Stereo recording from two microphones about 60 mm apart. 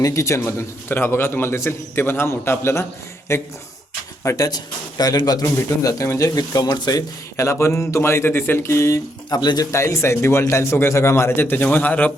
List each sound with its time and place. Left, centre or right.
0.0 s speech: left
0.4 s a man's voice: left
4.2 s speech: left
4.9 s a man's voice: left
5.6 s speech: left
6.1 s a man's voice: left
9.3 s a man's voice: left
9.7 s a man's voice: left